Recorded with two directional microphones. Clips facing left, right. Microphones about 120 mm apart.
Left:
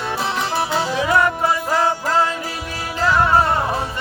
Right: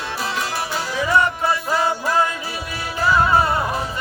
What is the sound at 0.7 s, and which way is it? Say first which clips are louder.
Music: left 2 dB; 60° left (ahead or behind).